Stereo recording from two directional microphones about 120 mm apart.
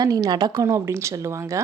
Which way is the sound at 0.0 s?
30° right (ahead or behind).